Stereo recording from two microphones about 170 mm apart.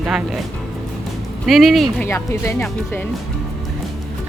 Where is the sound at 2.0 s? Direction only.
15° left (ahead or behind).